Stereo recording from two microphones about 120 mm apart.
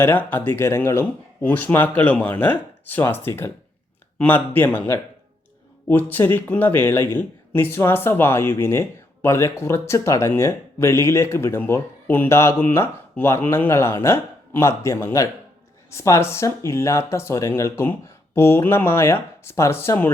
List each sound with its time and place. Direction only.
0.0 s speech: 15° left (ahead or behind)